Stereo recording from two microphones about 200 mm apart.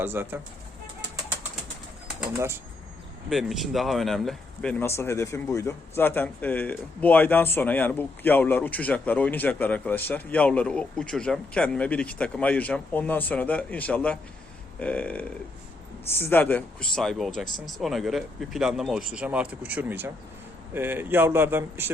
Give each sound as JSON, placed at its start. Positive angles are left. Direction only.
{"t": 0.0, "sound": "speech", "side_deg": -10}
{"t": 3.2, "sound": "speech", "side_deg": 0}